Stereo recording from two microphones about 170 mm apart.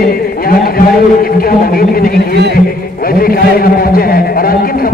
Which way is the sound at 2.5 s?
60° left (ahead or behind).